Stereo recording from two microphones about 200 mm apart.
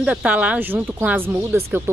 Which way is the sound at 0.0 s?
5° right (ahead or behind).